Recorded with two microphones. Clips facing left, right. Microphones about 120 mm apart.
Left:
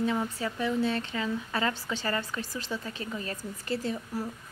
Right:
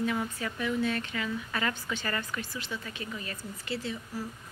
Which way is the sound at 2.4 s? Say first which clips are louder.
Left 3 dB; 35° left (ahead or behind).